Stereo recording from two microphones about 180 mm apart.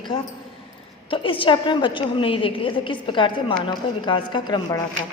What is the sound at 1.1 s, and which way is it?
A woman's voice, 30° left (ahead or behind).